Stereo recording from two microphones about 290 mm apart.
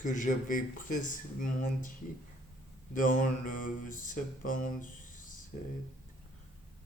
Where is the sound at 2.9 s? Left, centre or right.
Left.